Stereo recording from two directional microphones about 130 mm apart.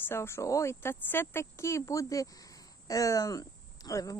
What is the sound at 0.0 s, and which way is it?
Speech, 20° left (ahead or behind).